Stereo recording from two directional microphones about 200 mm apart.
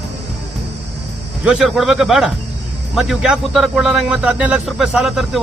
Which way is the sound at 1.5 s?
Centre (ahead or behind).